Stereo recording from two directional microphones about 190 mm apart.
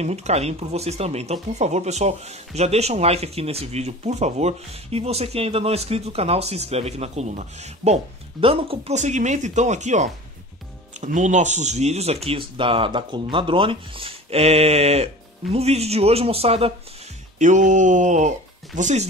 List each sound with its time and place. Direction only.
0.0 s speech: 35° right (ahead or behind)